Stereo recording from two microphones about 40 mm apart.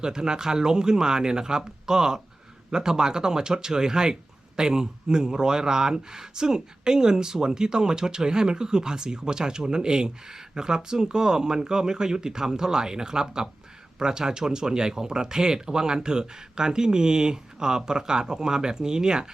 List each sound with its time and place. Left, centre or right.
0.0 s speech: centre